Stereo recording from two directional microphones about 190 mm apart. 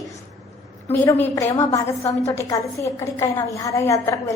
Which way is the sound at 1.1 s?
15° left (ahead or behind).